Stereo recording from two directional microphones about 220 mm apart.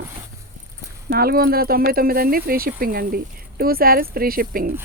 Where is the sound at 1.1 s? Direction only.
45° right (ahead or behind).